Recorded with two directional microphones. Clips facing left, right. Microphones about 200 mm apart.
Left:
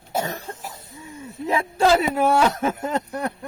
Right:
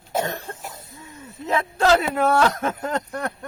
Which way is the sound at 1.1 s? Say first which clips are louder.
Even; 10° left (ahead or behind).